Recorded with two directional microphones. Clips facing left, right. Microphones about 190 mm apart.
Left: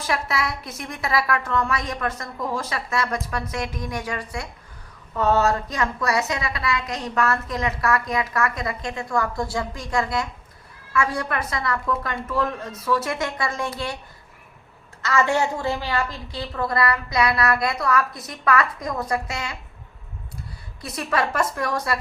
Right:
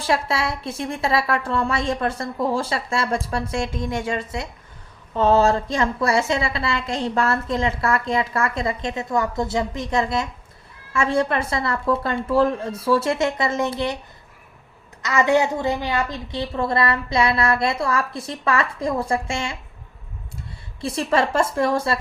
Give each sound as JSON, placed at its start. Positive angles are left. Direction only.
{"t": 0.0, "sound": "a woman's voice", "side_deg": -30}
{"t": 15.0, "sound": "a woman's voice", "side_deg": -15}
{"t": 20.8, "sound": "a woman's voice", "side_deg": -30}